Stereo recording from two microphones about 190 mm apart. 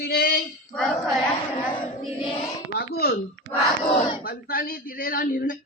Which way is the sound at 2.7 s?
55° left (ahead or behind).